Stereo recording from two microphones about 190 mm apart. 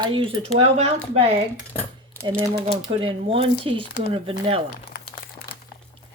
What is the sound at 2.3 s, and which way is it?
Speech, 20° right (ahead or behind).